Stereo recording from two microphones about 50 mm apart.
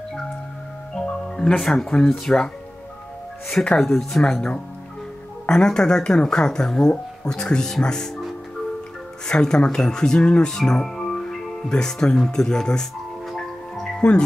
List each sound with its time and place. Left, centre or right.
0.9 s music: centre
1.6 s speech: centre
2.3 s speech: left
3.8 s speech: centre
4.2 s speech: centre
9.3 s speech: centre
13.3 s music: centre